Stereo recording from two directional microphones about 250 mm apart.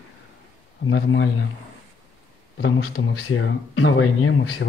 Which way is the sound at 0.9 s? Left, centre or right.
Left.